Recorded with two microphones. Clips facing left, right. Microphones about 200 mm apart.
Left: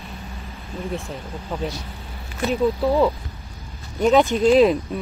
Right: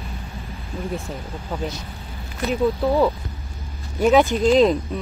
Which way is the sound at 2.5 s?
5° right (ahead or behind).